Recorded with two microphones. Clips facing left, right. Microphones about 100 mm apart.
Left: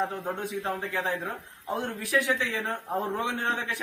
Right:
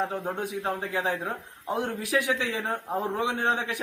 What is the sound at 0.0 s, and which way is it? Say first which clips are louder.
A woman's voice: right 1 dB; 15° right (ahead or behind).